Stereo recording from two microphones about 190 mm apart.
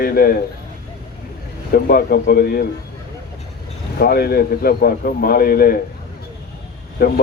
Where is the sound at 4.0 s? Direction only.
55° left (ahead or behind).